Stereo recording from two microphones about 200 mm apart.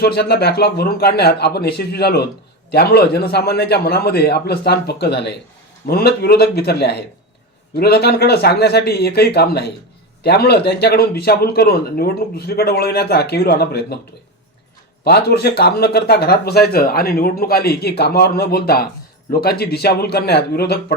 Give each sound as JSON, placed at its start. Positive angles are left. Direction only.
{"t": 0.0, "sound": "speech", "side_deg": 55}
{"t": 15.0, "sound": "speech", "side_deg": 50}